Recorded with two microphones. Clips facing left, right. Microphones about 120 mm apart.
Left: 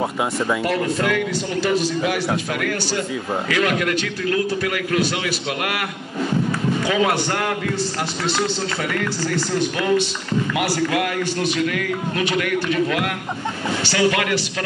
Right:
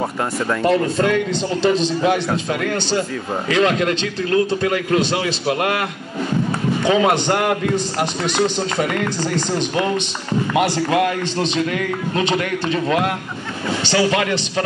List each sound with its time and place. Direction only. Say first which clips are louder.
0.0 s speech: even; 5° left (ahead or behind)
0.7 s a man's voice: right 4 dB; 25° right (ahead or behind)